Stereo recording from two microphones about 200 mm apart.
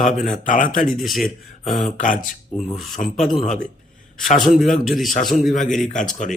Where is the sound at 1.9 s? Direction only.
40° left (ahead or behind).